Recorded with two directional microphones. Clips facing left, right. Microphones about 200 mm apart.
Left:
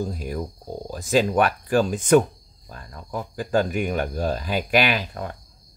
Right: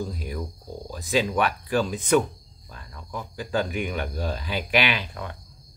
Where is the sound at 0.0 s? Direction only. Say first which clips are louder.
Left 4 dB; 45° left (ahead or behind).